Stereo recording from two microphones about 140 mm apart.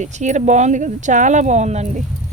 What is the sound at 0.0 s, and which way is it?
A woman's voice, 55° right (ahead or behind).